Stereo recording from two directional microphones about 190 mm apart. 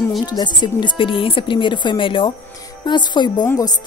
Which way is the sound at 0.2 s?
20° left (ahead or behind).